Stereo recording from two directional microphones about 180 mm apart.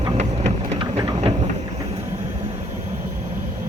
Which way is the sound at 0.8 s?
30° right (ahead or behind).